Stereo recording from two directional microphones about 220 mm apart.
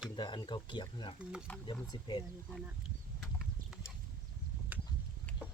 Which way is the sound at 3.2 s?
Centre (ahead or behind).